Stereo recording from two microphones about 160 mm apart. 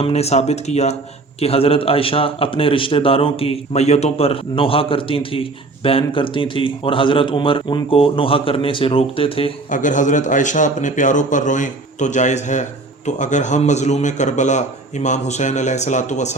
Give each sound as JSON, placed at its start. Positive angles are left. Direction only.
{"t": 0.0, "sound": "a man's voice", "side_deg": 40}
{"t": 9.6, "sound": "a man's voice", "side_deg": 55}